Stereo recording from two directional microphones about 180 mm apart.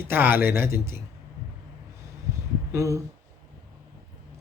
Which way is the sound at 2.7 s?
15° right (ahead or behind).